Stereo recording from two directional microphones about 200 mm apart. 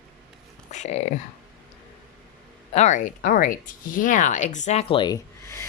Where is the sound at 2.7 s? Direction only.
35° left (ahead or behind).